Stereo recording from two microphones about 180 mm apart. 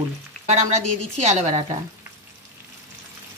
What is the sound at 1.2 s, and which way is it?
Speech, 40° right (ahead or behind).